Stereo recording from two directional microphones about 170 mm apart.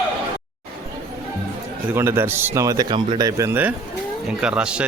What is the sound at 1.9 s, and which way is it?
A man's voice, 15° right (ahead or behind).